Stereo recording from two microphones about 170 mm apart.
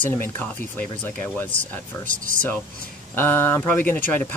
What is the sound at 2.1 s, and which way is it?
Speech, 50° right (ahead or behind).